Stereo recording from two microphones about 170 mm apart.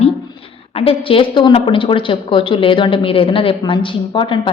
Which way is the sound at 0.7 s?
30° left (ahead or behind).